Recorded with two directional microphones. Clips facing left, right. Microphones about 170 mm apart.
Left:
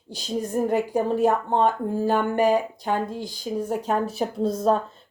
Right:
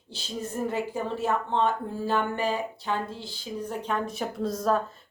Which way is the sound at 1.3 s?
45° left (ahead or behind).